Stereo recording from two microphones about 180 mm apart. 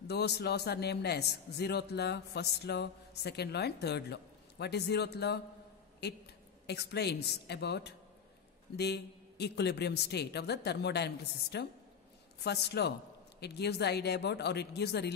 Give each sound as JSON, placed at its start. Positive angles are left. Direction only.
{"t": 0.1, "sound": "a man's voice", "side_deg": 65}